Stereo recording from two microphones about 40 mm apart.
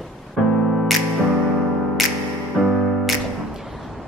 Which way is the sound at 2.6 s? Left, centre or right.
Centre.